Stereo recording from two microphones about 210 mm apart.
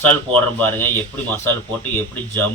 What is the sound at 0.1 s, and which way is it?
Speech, 10° left (ahead or behind).